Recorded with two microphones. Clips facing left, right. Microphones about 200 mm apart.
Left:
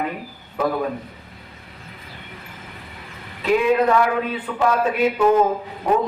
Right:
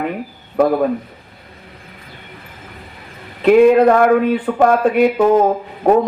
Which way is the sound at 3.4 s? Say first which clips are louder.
Right 9 dB; 55° right (ahead or behind).